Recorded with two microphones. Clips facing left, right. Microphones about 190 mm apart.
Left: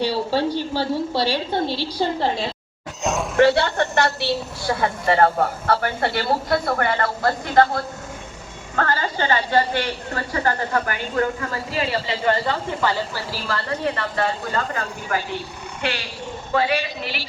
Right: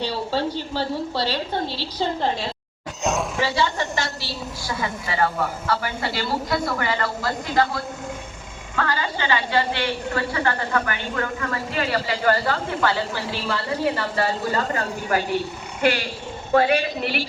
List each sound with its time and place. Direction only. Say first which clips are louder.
0.0 s a woman's voice: left 3 dB; 10° left (ahead or behind)
3.0 s roar: even; centre (ahead or behind)
3.3 s a woman's voice: left 7 dB; 60° left (ahead or behind); by 13.2 s 15° left (ahead or behind)
13.3 s a woman's voice: left 1 dB; centre (ahead or behind)
16.6 s a woman's voice: right 3 dB; 50° right (ahead or behind)